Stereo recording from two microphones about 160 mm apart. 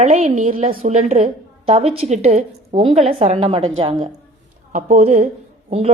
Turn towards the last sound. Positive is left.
turn(degrees=-45)  # may be behind; listen again after turning